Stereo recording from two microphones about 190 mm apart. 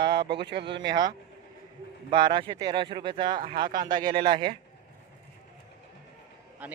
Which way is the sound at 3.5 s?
50° right (ahead or behind).